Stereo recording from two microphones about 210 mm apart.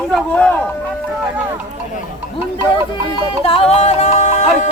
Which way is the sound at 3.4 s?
25° left (ahead or behind).